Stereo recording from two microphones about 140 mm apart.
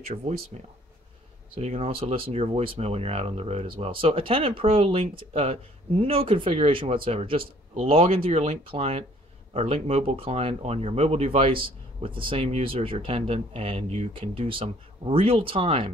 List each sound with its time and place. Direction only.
1.5 s speech: 45° right (ahead or behind)